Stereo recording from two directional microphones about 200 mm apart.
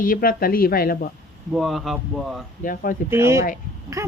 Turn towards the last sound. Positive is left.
turn(degrees=-15)  # may be behind; listen again after turning